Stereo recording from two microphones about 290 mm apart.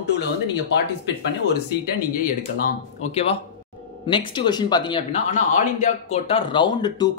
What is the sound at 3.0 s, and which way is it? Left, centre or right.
A man's voice, left.